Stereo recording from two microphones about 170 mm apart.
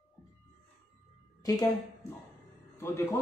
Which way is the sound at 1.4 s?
20° left (ahead or behind).